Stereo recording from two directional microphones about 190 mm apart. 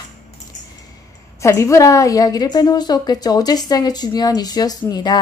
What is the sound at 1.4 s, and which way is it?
A woman's voice, 15° left (ahead or behind).